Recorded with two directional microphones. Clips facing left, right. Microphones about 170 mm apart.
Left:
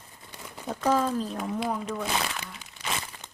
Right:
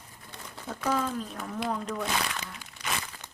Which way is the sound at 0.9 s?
35° left (ahead or behind).